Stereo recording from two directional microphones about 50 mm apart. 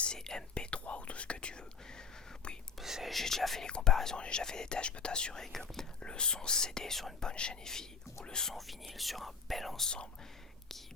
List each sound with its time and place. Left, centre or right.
0.0 s speech: centre
2.8 s speech: centre
3.2 s speech: centre
3.7 s speech: centre
7.3 s speech: centre
8.5 s speech: centre